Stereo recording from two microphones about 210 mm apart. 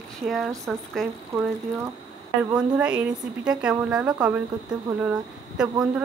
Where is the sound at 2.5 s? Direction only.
5° right (ahead or behind).